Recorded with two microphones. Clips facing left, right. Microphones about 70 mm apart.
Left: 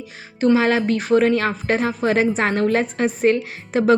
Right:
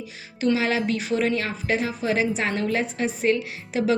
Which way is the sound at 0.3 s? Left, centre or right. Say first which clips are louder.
Left 6 dB; left.